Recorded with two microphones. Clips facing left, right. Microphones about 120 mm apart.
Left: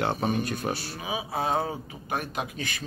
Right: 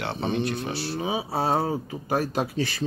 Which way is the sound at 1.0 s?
35° right (ahead or behind).